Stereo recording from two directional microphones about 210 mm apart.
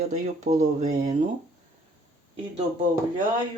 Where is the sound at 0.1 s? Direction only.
35° right (ahead or behind).